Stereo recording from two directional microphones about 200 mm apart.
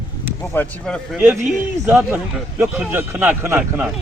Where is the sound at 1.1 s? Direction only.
10° right (ahead or behind).